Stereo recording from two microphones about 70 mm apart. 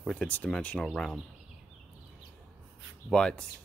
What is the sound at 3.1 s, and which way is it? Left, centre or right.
Speech, centre.